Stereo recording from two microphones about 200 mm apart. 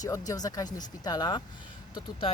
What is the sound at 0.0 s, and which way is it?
Speech, 20° left (ahead or behind).